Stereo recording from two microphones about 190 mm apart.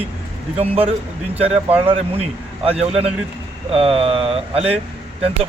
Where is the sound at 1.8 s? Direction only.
30° right (ahead or behind).